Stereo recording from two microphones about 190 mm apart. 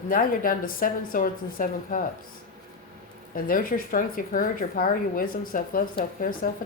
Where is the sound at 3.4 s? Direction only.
50° left (ahead or behind).